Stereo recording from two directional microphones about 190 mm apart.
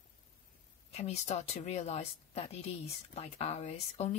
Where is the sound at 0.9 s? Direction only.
35° left (ahead or behind).